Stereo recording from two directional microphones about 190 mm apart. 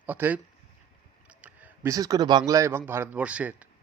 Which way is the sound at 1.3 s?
5° right (ahead or behind).